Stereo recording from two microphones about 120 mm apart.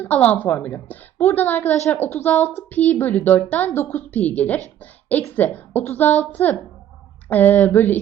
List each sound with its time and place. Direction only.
0.0 s a woman's voice: 15° left (ahead or behind)
4.8 s a sound: 15° left (ahead or behind)
5.2 s a woman's voice: 15° left (ahead or behind)